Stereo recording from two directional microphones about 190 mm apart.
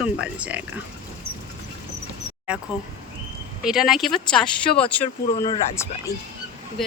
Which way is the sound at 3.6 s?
Centre (ahead or behind).